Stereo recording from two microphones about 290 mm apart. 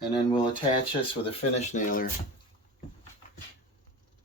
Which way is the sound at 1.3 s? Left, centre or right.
Left.